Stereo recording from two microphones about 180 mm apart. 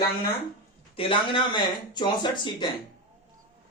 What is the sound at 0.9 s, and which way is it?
Speech, 30° left (ahead or behind).